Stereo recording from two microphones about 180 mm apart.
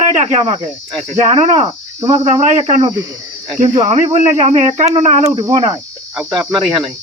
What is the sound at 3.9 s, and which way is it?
Speech, 35° right (ahead or behind).